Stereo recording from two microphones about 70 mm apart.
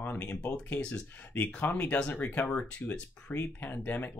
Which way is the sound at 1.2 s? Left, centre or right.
Left.